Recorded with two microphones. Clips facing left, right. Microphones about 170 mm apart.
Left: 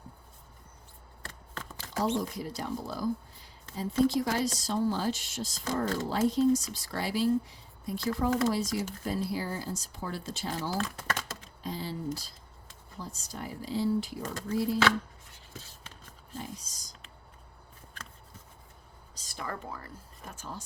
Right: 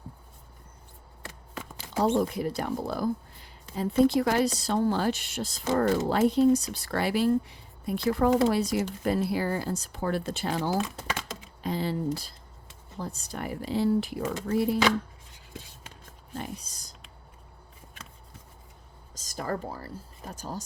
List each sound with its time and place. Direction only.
2.0 s speech: 60° right (ahead or behind)
10.8 s a sound: 10° right (ahead or behind)
11.6 s speech: 65° right (ahead or behind)
15.5 s a sound: 15° right (ahead or behind)
16.3 s speech: 65° right (ahead or behind)
19.1 s speech: 40° right (ahead or behind)